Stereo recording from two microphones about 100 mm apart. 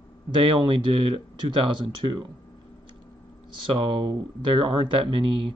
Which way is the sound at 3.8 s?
55° right (ahead or behind).